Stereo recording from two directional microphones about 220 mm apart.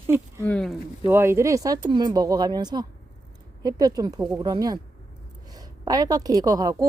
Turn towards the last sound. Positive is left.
turn(degrees=-15)  # may be behind; listen again after turning